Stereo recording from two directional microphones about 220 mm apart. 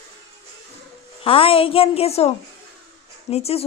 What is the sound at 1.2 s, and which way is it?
Speech, 25° left (ahead or behind).